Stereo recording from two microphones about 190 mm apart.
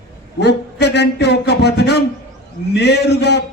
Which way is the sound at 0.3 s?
65° left (ahead or behind).